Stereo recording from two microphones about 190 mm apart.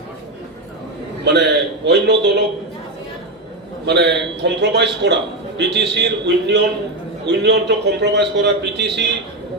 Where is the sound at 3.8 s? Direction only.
60° right (ahead or behind).